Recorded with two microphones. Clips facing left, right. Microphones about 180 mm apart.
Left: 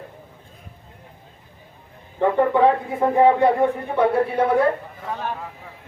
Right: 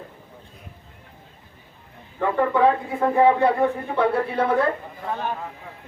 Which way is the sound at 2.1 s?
20° left (ahead or behind).